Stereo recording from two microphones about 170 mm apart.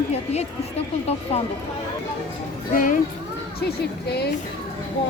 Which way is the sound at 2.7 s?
50° left (ahead or behind).